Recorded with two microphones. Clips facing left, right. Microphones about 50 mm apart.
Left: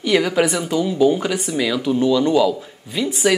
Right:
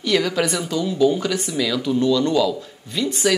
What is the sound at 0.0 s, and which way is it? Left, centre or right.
Speech, centre.